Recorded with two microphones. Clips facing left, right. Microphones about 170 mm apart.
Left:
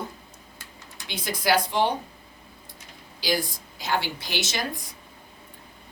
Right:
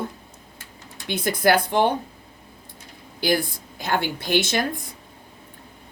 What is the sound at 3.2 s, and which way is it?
Speech, 55° right (ahead or behind).